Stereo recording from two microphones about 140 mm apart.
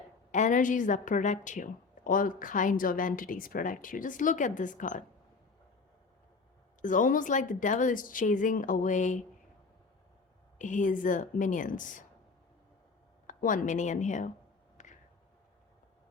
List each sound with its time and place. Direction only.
0.3 s a woman's voice: 60° left (ahead or behind)
6.8 s a woman's voice: 70° left (ahead or behind)
10.6 s a woman's voice: 65° left (ahead or behind)
13.2 s speech: 75° left (ahead or behind)
14.8 s a sound: 60° left (ahead or behind)